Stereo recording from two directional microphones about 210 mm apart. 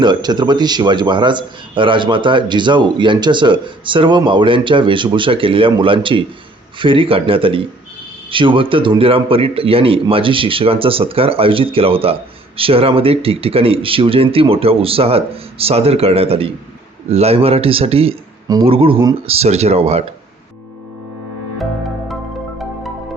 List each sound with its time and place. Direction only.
0.0 s speech: 20° right (ahead or behind)